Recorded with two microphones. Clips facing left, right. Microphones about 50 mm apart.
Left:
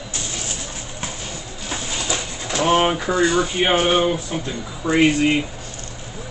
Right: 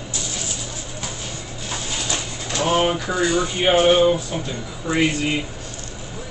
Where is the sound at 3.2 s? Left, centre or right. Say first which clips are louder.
Left 2 dB; left.